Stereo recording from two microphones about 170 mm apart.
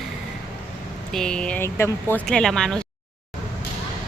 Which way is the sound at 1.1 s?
5° left (ahead or behind).